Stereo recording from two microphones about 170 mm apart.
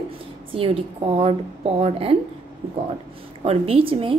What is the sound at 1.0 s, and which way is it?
A woman's voice, 35° right (ahead or behind).